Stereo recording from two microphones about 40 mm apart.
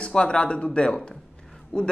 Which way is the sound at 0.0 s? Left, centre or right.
Left.